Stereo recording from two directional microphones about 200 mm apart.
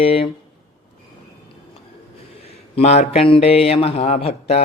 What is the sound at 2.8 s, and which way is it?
Speech, 35° left (ahead or behind).